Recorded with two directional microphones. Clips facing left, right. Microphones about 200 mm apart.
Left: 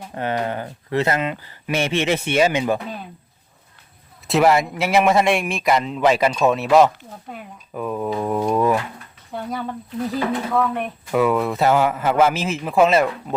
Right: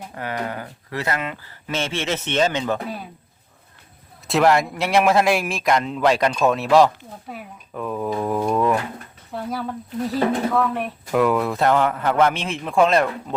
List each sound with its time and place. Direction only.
0.1 s speech: 25° left (ahead or behind)
4.3 s a man's voice: centre (ahead or behind)